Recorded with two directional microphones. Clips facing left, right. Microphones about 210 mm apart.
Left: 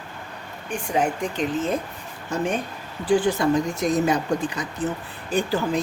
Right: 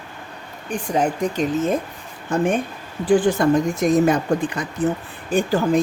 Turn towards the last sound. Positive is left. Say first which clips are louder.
# right 5 dB
turn(degrees=-45)  # may be behind; listen again after turning